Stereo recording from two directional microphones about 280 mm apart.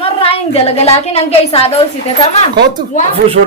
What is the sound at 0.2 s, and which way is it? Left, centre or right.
A woman's voice, left.